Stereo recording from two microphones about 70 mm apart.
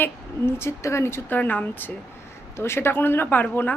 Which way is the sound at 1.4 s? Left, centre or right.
Left.